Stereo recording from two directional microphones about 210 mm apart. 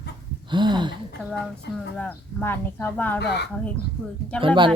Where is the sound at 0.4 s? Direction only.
20° right (ahead or behind).